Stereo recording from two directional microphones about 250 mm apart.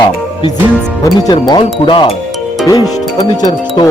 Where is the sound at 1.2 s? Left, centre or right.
Centre.